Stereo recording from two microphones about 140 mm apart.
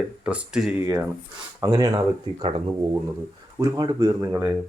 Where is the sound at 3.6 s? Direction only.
25° right (ahead or behind).